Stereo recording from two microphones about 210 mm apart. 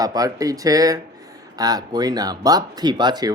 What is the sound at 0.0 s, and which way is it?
Speech, 15° right (ahead or behind).